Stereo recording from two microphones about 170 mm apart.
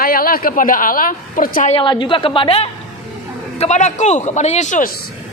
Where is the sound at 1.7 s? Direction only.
30° left (ahead or behind).